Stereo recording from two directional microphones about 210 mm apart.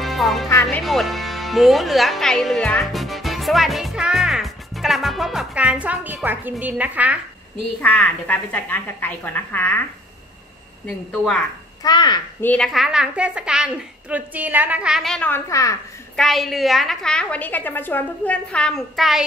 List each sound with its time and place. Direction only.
0.0 s music: centre (ahead or behind)
0.5 s a woman's voice: 15° left (ahead or behind)
0.8 s speech: centre (ahead or behind)
7.8 s a woman's voice: 5° left (ahead or behind)
11.1 s speech: 5° left (ahead or behind)
11.8 s a child's voice: 20° left (ahead or behind)
12.4 s speech: 5° left (ahead or behind)
16.2 s speech: centre (ahead or behind)